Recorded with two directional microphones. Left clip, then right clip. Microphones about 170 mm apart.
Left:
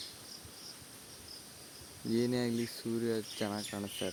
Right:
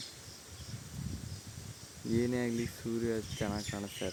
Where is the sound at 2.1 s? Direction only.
10° left (ahead or behind).